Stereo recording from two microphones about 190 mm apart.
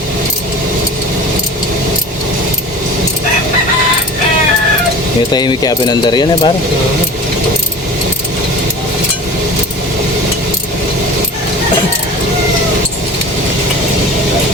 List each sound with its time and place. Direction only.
5.3 s speech: 20° left (ahead or behind)